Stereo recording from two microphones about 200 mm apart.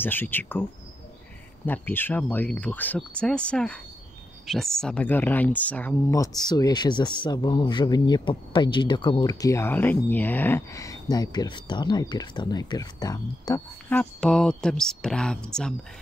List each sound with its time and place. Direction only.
0.0 s speech: 10° left (ahead or behind)
1.7 s speech: 10° left (ahead or behind)
13.9 s speech: 5° left (ahead or behind)